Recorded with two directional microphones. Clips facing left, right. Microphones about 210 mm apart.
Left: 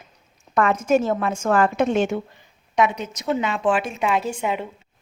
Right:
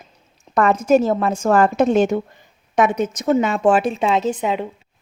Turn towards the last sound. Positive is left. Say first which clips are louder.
# right 4 dB
turn(degrees=-20)  # may be behind; listen again after turning